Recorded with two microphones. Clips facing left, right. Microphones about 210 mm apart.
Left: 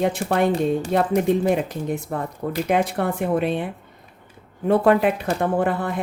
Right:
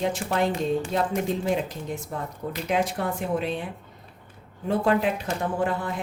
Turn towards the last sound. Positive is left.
turn(degrees=60)  # may be behind; listen again after turning